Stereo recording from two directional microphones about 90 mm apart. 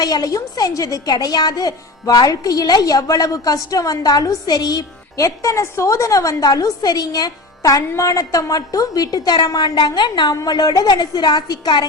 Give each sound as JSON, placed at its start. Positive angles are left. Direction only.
{"t": 0.0, "sound": "a woman's voice", "side_deg": 45}